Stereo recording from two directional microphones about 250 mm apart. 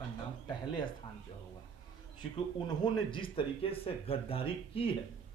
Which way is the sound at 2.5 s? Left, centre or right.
Centre.